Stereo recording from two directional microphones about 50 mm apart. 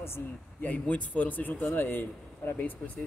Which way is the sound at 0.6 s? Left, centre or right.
Left.